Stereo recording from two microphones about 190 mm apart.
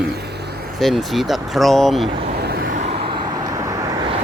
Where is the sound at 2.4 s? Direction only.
55° right (ahead or behind).